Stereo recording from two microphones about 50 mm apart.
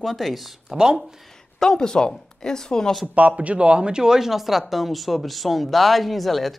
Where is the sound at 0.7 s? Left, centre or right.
Centre.